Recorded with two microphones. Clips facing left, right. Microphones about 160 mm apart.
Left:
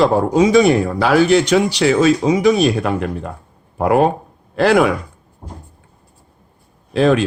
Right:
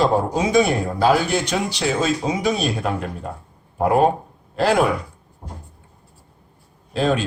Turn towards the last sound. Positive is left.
turn(degrees=75)  # may be behind; listen again after turning